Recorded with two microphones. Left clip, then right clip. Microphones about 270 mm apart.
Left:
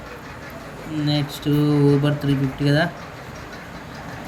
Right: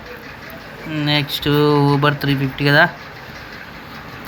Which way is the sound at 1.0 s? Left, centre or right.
Centre.